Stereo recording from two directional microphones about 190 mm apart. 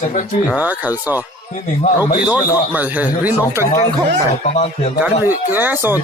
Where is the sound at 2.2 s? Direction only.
10° right (ahead or behind).